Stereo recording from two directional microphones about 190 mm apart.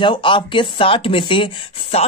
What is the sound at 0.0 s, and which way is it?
Speech, 25° left (ahead or behind).